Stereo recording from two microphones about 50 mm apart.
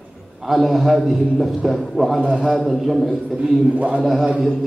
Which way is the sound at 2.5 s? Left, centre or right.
Centre.